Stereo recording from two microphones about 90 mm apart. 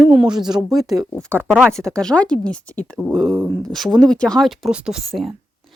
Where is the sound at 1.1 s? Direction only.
20° left (ahead or behind).